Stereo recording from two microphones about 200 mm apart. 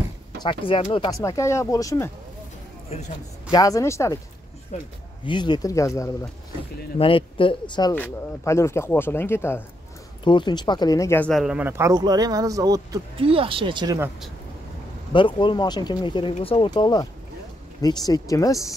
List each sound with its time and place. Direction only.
0.4 s speech: 25° left (ahead or behind)
1.2 s speech: 15° left (ahead or behind)
3.5 s speech: 15° left (ahead or behind)
4.7 s speech: 35° left (ahead or behind)
5.2 s speech: 20° left (ahead or behind)
7.0 s speech: 25° left (ahead or behind)
7.9 s speech: 10° left (ahead or behind)
10.2 s speech: 25° left (ahead or behind); by 13.9 s 25° right (ahead or behind)
15.1 s speech: 25° left (ahead or behind)